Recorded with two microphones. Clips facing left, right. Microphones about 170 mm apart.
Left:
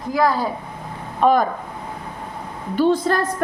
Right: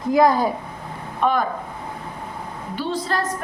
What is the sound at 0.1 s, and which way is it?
Speech, 20° right (ahead or behind).